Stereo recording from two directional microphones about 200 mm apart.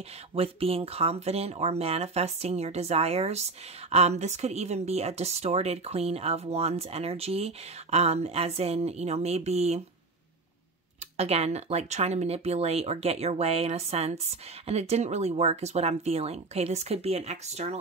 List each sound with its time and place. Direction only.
0.3 s speech: 30° right (ahead or behind)
11.1 s speech: 30° right (ahead or behind)